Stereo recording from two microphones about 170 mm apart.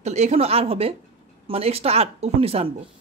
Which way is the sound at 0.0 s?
40° right (ahead or behind).